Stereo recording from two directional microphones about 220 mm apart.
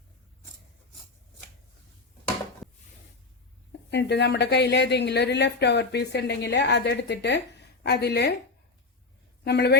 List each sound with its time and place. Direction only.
3.9 s a woman's voice: 50° left (ahead or behind)
9.4 s a woman's voice: 50° left (ahead or behind)